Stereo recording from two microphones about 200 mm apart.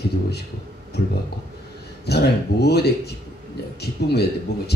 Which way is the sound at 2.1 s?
55° left (ahead or behind).